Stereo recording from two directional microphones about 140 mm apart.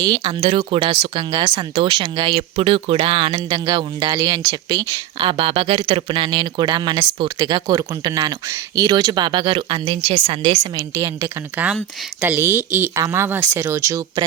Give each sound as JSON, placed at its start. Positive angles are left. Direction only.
{"t": 0.0, "sound": "speech", "side_deg": -35}
{"t": 5.3, "sound": "speech", "side_deg": -40}
{"t": 10.9, "sound": "a woman's voice", "side_deg": -20}